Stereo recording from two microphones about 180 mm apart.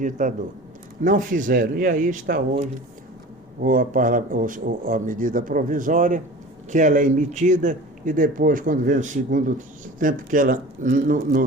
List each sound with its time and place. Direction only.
0.0 s a man's voice: 45° right (ahead or behind)